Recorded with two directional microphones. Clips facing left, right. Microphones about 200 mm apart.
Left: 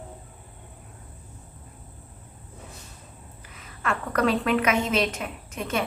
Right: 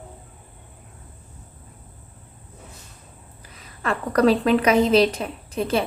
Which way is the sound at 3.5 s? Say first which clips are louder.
Right 3 dB; 35° right (ahead or behind).